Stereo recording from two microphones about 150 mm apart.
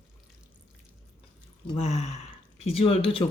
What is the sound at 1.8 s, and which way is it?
Speech, 45° left (ahead or behind).